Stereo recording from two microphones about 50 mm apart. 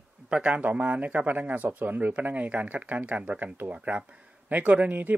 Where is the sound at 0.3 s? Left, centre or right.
Right.